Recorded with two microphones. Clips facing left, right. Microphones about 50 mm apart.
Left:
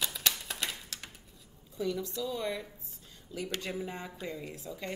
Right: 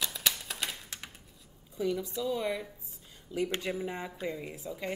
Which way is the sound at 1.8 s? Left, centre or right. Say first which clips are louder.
Right 2 dB; centre.